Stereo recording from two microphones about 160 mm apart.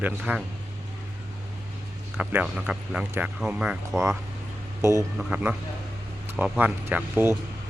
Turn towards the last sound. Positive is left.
turn(degrees=-10)  # may be behind; listen again after turning